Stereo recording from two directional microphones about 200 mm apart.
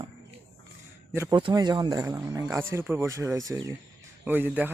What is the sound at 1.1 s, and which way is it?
A man's voice, 15° right (ahead or behind).